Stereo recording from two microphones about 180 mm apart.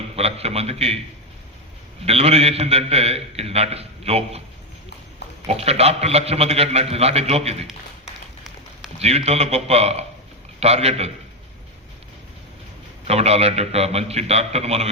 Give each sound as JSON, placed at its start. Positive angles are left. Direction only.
{"t": 0.2, "sound": "a man's voice", "side_deg": -35}
{"t": 2.0, "sound": "a man's voice", "side_deg": -35}
{"t": 5.5, "sound": "a man's voice", "side_deg": -35}
{"t": 9.0, "sound": "a man's voice", "side_deg": -35}
{"t": 13.1, "sound": "a man's voice", "side_deg": -35}